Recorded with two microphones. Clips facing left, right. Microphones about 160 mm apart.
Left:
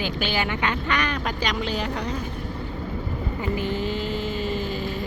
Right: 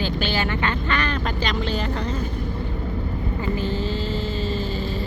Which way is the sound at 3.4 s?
15° left (ahead or behind).